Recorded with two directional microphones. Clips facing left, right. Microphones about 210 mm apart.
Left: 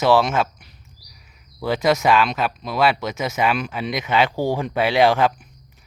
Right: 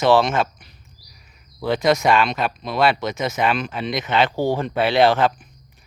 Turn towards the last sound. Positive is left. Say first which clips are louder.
# even
turn(degrees=10)  # may be behind; listen again after turning